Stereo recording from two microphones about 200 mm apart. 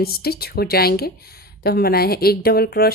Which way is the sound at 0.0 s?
50° left (ahead or behind).